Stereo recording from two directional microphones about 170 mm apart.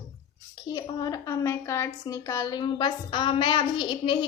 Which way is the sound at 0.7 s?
25° left (ahead or behind).